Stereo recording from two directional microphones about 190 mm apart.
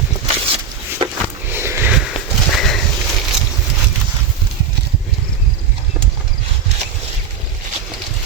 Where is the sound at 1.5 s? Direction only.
15° right (ahead or behind).